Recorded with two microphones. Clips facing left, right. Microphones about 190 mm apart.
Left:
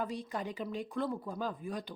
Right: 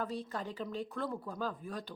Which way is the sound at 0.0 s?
15° left (ahead or behind).